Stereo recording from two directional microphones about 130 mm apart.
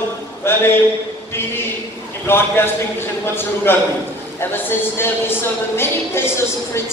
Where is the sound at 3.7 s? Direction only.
15° left (ahead or behind).